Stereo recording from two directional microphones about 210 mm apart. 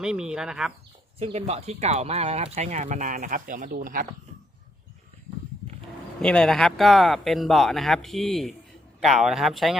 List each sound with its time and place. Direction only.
0.0 s speech: 5° right (ahead or behind)
1.2 s speech: 30° right (ahead or behind)
6.2 s speech: 5° left (ahead or behind)